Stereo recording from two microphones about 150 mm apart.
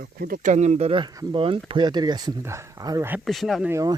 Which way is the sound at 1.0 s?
25° right (ahead or behind).